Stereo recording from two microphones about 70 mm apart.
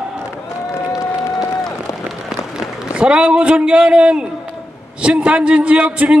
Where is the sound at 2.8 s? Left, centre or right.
Centre.